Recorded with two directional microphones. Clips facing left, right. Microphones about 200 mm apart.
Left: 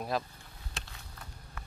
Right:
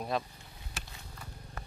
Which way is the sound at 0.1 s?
Centre (ahead or behind).